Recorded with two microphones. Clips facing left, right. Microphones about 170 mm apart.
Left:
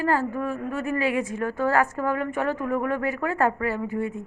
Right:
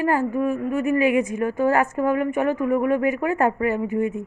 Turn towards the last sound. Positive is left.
turn(degrees=-20)  # may be behind; listen again after turning